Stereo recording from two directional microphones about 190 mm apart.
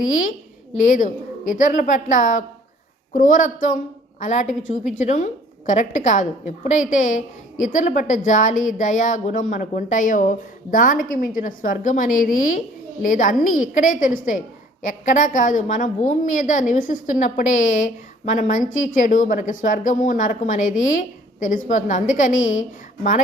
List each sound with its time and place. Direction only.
0.9 s a woman's voice: 45° left (ahead or behind)